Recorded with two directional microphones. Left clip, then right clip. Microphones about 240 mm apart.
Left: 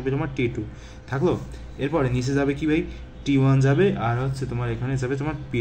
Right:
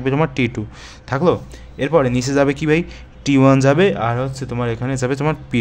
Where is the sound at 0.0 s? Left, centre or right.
Right.